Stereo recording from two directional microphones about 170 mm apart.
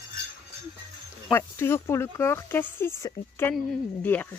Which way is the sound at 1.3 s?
15° left (ahead or behind).